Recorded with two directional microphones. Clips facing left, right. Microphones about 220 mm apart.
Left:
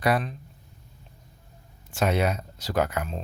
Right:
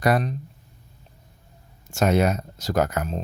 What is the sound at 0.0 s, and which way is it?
Speech, 45° right (ahead or behind).